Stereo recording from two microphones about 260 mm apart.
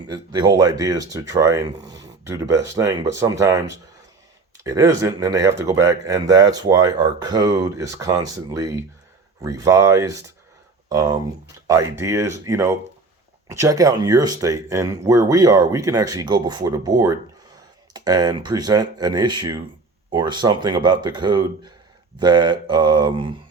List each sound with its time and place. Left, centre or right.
0.1 s speech: centre